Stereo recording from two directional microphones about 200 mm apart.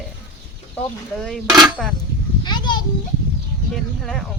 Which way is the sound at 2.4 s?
20° left (ahead or behind).